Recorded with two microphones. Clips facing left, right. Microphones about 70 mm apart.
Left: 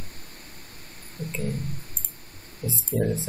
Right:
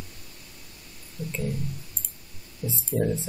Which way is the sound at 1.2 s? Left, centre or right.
Left.